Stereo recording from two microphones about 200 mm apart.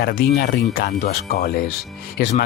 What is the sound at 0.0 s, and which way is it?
Speech, 50° left (ahead or behind).